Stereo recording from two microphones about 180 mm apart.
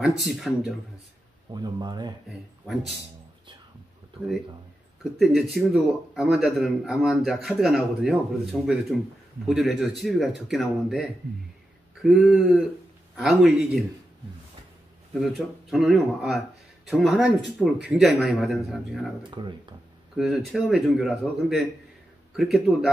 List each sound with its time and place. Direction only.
0.3 s a man's voice: centre (ahead or behind)
1.5 s speech: 25° right (ahead or behind)
2.6 s a man's voice: centre (ahead or behind)
5.2 s a man's voice: centre (ahead or behind)
15.1 s a man's voice: centre (ahead or behind)
19.4 s speech: 30° right (ahead or behind)
20.2 s a man's voice: centre (ahead or behind)